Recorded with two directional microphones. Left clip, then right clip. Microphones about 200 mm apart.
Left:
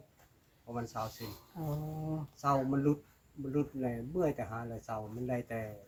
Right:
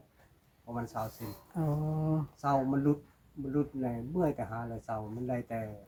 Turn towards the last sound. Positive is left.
turn(degrees=20)  # may be behind; listen again after turning